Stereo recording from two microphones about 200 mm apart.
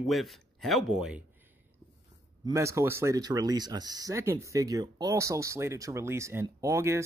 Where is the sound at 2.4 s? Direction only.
15° right (ahead or behind).